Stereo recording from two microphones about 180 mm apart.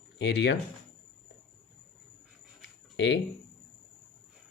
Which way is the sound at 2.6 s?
85° left.